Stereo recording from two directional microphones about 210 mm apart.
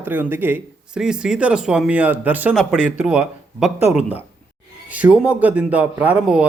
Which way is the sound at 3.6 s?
30° left (ahead or behind).